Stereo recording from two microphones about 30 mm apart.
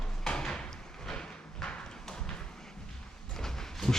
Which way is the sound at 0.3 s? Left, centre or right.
Left.